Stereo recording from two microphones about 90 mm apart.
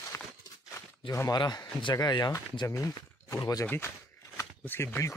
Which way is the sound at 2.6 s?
35° left (ahead or behind).